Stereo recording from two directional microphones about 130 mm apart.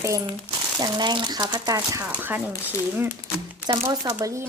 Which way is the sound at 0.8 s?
35° right (ahead or behind).